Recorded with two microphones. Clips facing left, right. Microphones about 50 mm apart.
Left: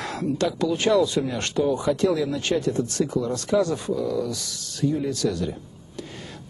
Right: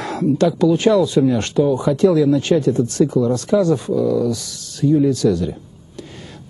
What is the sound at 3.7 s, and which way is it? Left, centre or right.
Speech, centre.